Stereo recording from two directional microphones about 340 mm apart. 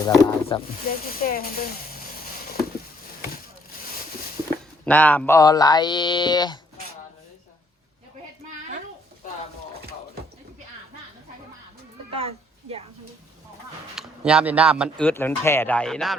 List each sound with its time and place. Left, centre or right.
0.0 s speech: centre
0.9 s speech: left
4.9 s speech: centre
12.1 s a sound: centre
13.9 s speech: centre